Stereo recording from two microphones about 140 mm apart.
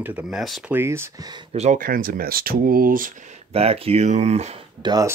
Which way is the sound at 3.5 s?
45° right (ahead or behind).